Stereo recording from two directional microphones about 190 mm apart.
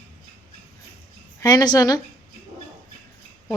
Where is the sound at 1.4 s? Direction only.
20° left (ahead or behind).